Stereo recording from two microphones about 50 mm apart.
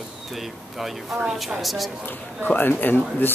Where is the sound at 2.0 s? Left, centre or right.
Left.